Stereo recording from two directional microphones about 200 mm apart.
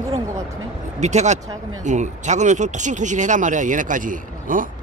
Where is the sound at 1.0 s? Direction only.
35° right (ahead or behind).